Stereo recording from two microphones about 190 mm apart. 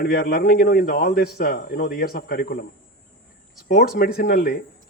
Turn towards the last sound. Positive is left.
turn(degrees=55)  # may be behind; listen again after turning